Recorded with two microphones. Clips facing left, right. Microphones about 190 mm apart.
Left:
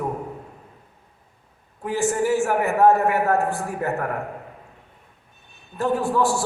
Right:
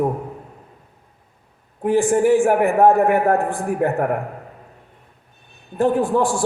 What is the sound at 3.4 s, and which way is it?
Speech, 50° right (ahead or behind).